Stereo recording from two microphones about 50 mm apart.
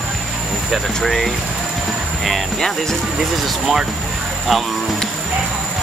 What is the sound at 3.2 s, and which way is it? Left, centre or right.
Speech, centre.